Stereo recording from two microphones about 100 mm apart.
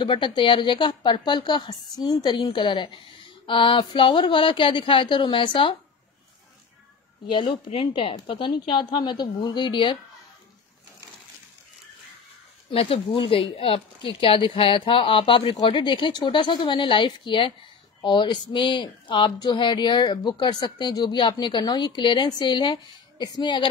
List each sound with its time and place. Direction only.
0.0 s a woman's voice: 50° left (ahead or behind)
7.2 s speech: 55° left (ahead or behind)
12.7 s a woman's voice: 70° left (ahead or behind); by 23.7 s 50° left (ahead or behind)